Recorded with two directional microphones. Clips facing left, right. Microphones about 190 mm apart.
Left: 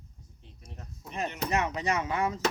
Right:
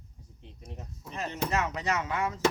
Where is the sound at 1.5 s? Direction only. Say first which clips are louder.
Left 2 dB; 15° left (ahead or behind).